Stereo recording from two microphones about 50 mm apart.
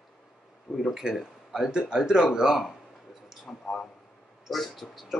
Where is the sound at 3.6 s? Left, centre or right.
Centre.